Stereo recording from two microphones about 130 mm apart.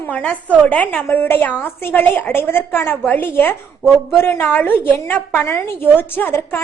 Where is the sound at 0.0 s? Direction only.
10° left (ahead or behind).